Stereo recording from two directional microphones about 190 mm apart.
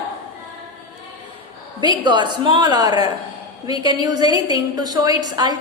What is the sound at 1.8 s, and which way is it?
A woman's voice, 25° right (ahead or behind).